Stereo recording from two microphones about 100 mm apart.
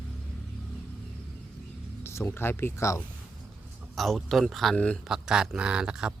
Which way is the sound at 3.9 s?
Centre (ahead or behind).